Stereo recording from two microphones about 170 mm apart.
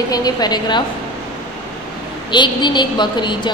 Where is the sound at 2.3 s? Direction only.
25° left (ahead or behind).